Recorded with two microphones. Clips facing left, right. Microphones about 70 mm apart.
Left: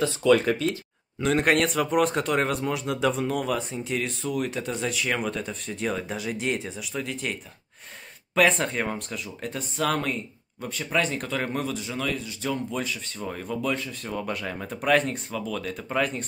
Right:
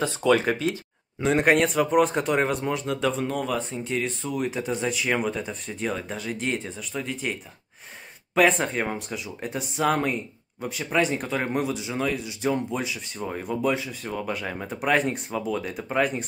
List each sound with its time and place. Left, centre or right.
0.5 s speech: centre
2.7 s speech: centre
8.4 s speech: centre